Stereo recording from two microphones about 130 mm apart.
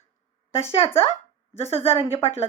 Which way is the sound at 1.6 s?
50° left (ahead or behind).